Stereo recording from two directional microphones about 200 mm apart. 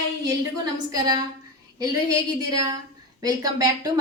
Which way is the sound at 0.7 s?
20° right (ahead or behind).